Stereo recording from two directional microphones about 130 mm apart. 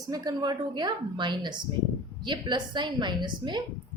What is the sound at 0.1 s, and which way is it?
A woman's voice, 30° right (ahead or behind).